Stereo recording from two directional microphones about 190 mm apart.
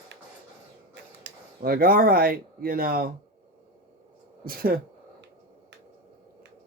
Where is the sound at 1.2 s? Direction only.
50° right (ahead or behind).